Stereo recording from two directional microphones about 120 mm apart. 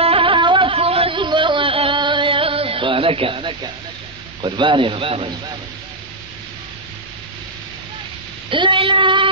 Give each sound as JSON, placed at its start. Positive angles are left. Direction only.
{"t": 0.0, "sound": "a sound", "side_deg": -50}
{"t": 4.4, "sound": "speech", "side_deg": -40}
{"t": 8.5, "sound": "speech", "side_deg": -45}